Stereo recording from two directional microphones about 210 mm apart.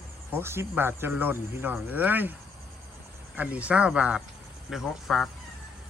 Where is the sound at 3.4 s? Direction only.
5° right (ahead or behind).